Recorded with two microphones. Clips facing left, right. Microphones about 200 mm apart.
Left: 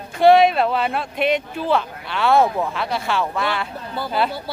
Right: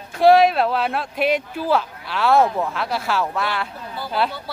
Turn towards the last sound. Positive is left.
turn(degrees=0)  # may be behind; listen again after turning